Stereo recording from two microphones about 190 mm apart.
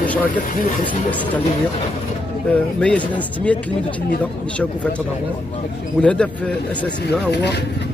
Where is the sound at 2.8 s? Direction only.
5° left (ahead or behind).